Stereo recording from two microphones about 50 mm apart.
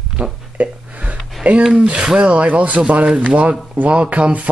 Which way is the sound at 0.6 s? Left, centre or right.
Right.